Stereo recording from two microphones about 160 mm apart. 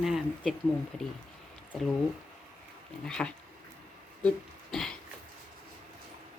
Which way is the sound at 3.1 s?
5° left (ahead or behind).